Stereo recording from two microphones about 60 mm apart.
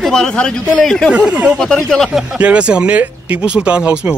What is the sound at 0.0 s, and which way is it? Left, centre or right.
Speech, centre.